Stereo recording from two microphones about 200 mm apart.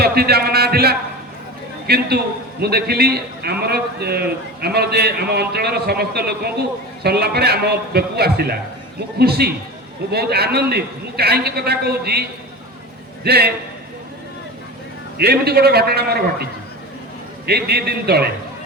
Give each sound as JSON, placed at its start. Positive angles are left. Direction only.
{"t": 0.0, "sound": "a man's voice", "side_deg": -50}
{"t": 13.2, "sound": "a man's voice", "side_deg": -55}
{"t": 15.2, "sound": "a man's voice", "side_deg": -55}